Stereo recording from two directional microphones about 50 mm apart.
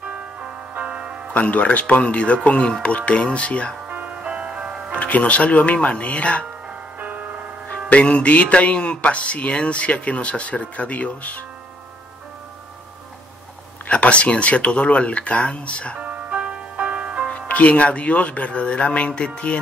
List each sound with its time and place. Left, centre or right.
0.1 s music: right
1.3 s speech: left
3.9 s music: right
4.9 s speech: left
7.0 s music: right
7.9 s speech: left
13.8 s speech: left
16.0 s music: right
17.3 s speech: left